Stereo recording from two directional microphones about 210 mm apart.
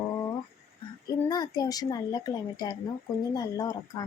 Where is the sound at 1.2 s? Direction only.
20° left (ahead or behind).